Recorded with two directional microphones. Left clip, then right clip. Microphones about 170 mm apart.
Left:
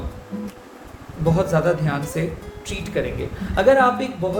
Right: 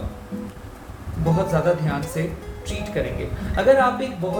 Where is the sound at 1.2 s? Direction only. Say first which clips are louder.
Left 2 dB; 40° left (ahead or behind).